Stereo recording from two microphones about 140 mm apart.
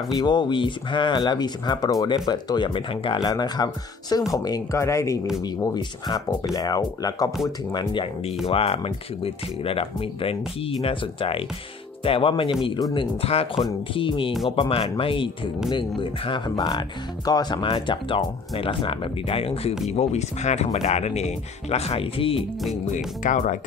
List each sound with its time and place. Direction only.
0.2 s speech: 30° left (ahead or behind)
22.9 s speech: 65° left (ahead or behind)